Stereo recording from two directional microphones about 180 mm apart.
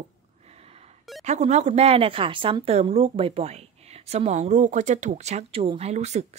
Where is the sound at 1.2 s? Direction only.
40° right (ahead or behind).